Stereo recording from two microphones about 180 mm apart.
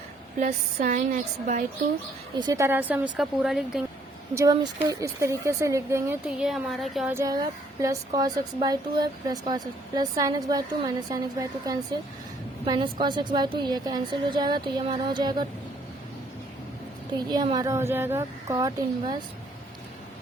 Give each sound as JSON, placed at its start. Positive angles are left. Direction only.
{"t": 0.3, "sound": "a woman's voice", "side_deg": -45}
{"t": 2.4, "sound": "speech", "side_deg": -20}
{"t": 4.4, "sound": "speech", "side_deg": -20}
{"t": 6.4, "sound": "a woman's voice", "side_deg": 0}
{"t": 7.1, "sound": "a woman's voice", "side_deg": -15}
{"t": 17.2, "sound": "a woman's voice", "side_deg": -25}